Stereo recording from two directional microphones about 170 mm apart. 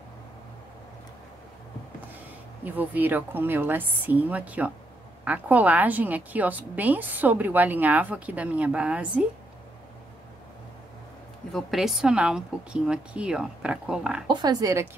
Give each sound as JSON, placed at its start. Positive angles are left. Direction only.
{"t": 2.6, "sound": "a woman's voice", "side_deg": -10}
{"t": 11.5, "sound": "a woman's voice", "side_deg": 0}
{"t": 14.3, "sound": "speech", "side_deg": -25}